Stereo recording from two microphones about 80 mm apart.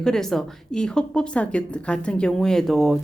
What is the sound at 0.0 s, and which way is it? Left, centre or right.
Speech, centre.